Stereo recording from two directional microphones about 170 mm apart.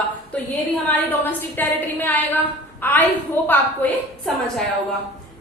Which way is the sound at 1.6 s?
10° left (ahead or behind).